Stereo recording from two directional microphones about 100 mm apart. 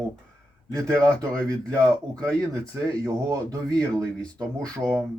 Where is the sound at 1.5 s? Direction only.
35° right (ahead or behind).